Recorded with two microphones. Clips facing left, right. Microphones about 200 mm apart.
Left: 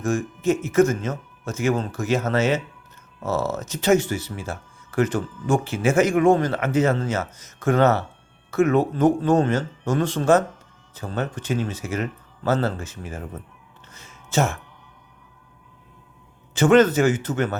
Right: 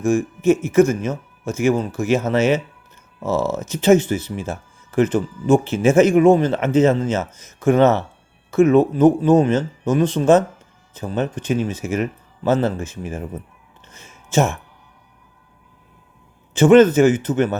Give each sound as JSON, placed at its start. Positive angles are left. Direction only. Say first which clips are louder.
{"t": 0.0, "sound": "speech", "louder": "right 5 dB", "side_deg": -15}
{"t": 13.8, "sound": "a sound", "louder": "right 2 dB", "side_deg": -20}
{"t": 16.6, "sound": "speech", "louder": "right 5 dB", "side_deg": -20}